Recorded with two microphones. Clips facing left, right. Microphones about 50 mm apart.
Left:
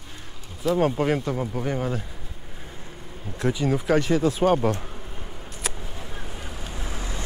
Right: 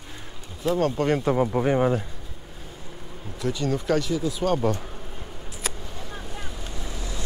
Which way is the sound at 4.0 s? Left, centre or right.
Left.